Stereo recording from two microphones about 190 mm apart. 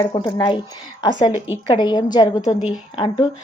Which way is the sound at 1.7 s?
25° left (ahead or behind).